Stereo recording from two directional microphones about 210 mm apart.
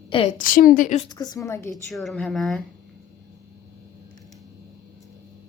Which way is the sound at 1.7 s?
Centre (ahead or behind).